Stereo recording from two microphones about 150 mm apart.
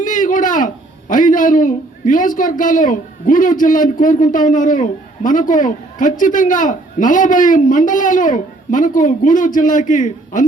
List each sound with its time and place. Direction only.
0.0 s a man's voice: 60° left (ahead or behind)